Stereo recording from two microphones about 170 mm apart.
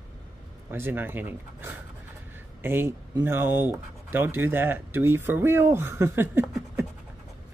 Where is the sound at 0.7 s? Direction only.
15° right (ahead or behind).